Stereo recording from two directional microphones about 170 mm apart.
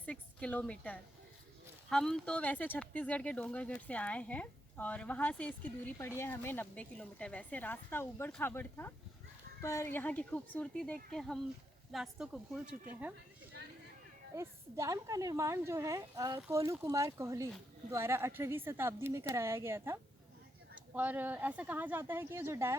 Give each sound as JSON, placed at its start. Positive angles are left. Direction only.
{"t": 0.0, "sound": "a woman's voice", "side_deg": 5}
{"t": 14.3, "sound": "speech", "side_deg": -15}